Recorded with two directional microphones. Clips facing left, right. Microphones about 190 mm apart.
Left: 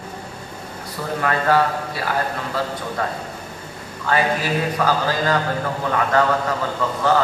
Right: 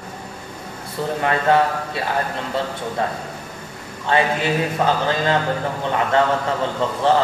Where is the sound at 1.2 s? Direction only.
25° right (ahead or behind).